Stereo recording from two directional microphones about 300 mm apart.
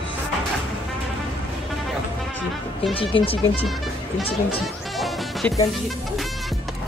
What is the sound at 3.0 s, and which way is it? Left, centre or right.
Speech, centre.